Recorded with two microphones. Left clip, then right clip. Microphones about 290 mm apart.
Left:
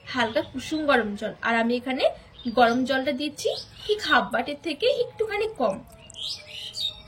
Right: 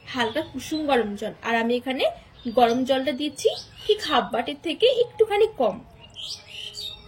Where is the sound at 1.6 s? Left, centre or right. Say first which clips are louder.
Even; centre.